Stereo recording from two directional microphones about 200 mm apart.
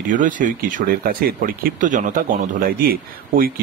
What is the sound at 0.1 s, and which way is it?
Speech, 40° right (ahead or behind).